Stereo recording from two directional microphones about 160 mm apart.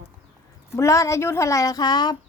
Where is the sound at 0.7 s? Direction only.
20° left (ahead or behind).